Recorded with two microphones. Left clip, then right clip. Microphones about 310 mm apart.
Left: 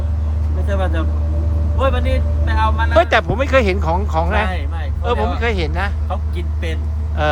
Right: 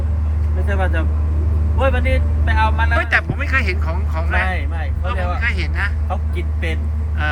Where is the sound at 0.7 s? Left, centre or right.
Centre.